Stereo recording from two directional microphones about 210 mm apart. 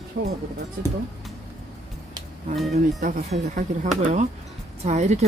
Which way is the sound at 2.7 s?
40° right (ahead or behind).